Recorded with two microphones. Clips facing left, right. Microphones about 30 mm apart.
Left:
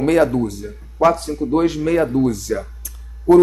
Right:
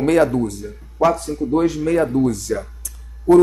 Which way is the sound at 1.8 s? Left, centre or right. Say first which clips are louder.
Even; centre.